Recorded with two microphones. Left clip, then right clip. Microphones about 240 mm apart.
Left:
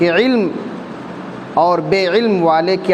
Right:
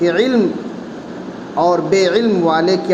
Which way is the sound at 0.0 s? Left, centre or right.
Left.